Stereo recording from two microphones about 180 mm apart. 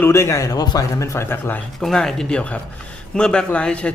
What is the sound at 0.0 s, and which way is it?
A man's voice, 15° left (ahead or behind).